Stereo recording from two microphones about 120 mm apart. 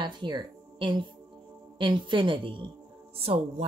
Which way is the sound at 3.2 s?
55° right (ahead or behind).